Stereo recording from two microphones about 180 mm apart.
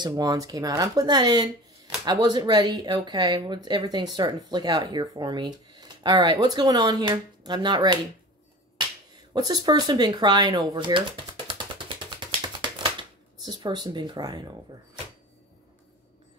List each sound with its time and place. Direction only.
0.0 s speech: 20° right (ahead or behind)
9.3 s a sound: 25° right (ahead or behind)
13.5 s speech: 25° right (ahead or behind)